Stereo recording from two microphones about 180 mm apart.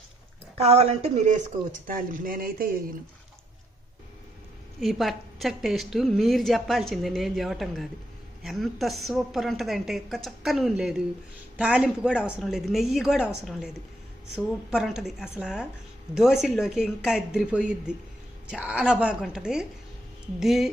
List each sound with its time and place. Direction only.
0.5 s speech: 35° right (ahead or behind)
1.9 s speech: 50° right (ahead or behind)
4.8 s a woman's voice: centre (ahead or behind)